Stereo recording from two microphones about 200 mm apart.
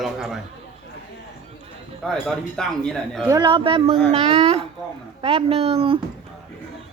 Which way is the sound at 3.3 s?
25° right (ahead or behind).